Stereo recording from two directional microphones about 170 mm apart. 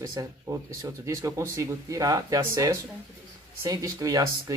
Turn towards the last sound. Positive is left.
turn(degrees=-20)  # may be behind; listen again after turning